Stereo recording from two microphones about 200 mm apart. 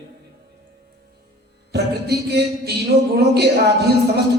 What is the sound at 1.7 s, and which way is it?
Music, 55° right (ahead or behind).